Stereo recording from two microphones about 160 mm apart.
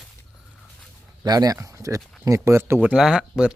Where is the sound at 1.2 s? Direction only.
25° right (ahead or behind); by 3.5 s 5° right (ahead or behind).